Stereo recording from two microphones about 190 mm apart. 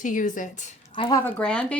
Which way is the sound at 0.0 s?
40° left (ahead or behind).